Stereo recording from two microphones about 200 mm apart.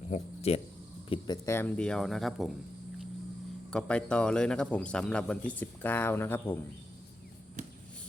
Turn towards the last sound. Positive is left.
turn(degrees=-35)  # may be behind; listen again after turning